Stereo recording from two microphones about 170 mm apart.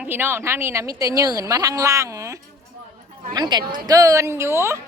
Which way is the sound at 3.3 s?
25° right (ahead or behind).